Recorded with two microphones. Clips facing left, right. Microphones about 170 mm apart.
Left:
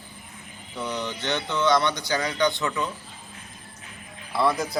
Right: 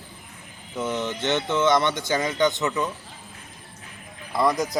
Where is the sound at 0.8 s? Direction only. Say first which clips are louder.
Right 4 dB; 20° right (ahead or behind).